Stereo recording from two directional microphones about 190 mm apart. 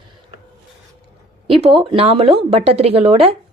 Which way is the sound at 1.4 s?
30° right (ahead or behind).